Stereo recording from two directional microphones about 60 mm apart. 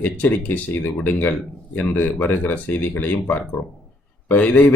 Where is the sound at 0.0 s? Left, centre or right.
Left.